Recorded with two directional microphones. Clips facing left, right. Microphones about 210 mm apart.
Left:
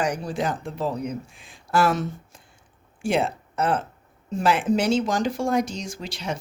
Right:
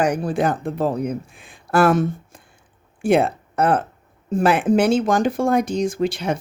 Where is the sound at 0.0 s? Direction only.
55° right (ahead or behind).